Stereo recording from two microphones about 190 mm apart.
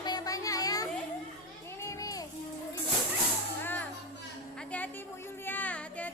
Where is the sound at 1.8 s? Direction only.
15° left (ahead or behind).